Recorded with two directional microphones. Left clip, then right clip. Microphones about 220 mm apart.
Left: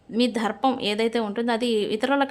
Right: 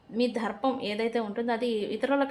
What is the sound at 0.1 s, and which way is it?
A woman's voice, 40° left (ahead or behind).